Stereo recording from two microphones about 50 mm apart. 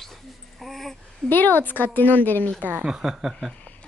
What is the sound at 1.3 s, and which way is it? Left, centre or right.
A woman's voice, left.